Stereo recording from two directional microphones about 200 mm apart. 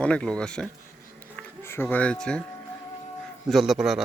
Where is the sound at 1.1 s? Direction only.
10° left (ahead or behind).